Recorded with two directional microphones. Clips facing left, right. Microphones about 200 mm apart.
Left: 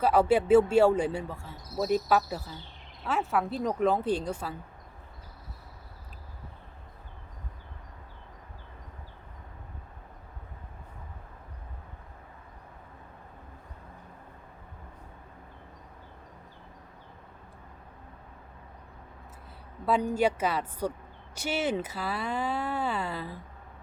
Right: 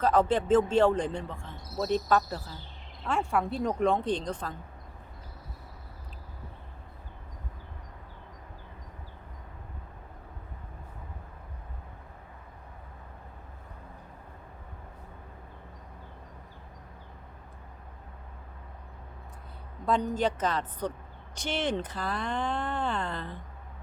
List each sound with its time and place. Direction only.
0.0 s speech: 10° left (ahead or behind)
19.8 s speech: 10° left (ahead or behind)